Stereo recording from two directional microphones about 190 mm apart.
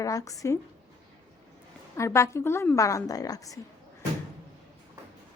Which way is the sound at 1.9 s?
15° left (ahead or behind).